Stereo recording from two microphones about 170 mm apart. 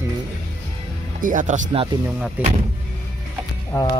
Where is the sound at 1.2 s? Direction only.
50° right (ahead or behind).